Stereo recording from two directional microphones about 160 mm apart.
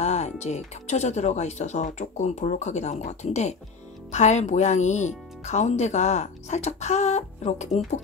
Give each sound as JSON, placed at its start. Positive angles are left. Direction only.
{"t": 0.0, "sound": "speech", "side_deg": 45}